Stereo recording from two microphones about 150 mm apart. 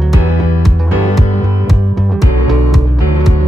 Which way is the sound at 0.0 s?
Centre (ahead or behind).